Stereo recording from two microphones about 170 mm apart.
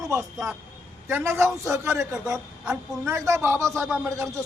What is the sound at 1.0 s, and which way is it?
Speech, 15° right (ahead or behind).